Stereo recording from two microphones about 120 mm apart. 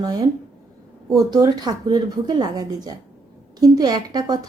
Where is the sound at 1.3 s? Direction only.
30° right (ahead or behind).